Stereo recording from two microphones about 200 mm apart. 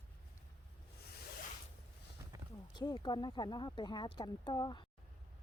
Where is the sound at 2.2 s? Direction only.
15° right (ahead or behind).